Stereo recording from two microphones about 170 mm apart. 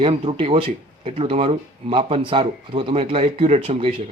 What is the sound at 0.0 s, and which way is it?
Speech, 35° right (ahead or behind).